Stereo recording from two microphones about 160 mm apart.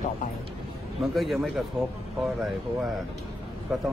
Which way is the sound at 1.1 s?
Centre (ahead or behind).